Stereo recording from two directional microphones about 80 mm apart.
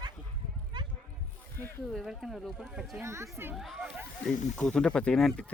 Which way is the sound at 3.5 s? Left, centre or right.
Centre.